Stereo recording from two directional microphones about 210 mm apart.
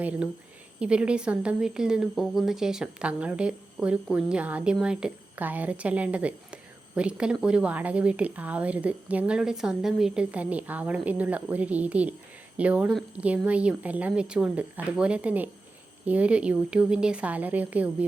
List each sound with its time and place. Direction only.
0.0 s a woman's voice: 5° right (ahead or behind)